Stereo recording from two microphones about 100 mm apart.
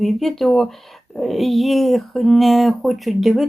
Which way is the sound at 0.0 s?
5° left (ahead or behind).